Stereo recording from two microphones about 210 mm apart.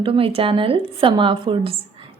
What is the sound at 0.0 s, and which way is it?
A woman's voice, 25° right (ahead or behind).